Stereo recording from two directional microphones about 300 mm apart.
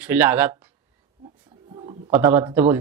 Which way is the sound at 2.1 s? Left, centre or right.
Centre.